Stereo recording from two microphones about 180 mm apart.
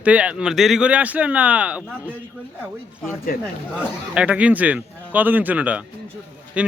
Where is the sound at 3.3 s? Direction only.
50° left (ahead or behind).